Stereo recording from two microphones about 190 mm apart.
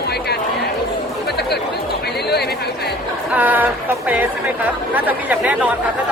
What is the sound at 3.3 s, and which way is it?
Speech, 10° right (ahead or behind).